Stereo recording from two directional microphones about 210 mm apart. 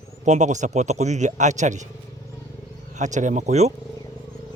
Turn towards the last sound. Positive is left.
turn(degrees=-30)  # may be behind; listen again after turning